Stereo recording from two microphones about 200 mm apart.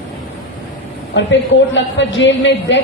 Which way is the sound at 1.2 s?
65° left (ahead or behind).